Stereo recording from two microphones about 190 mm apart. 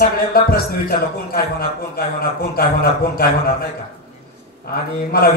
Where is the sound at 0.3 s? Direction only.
50° left (ahead or behind).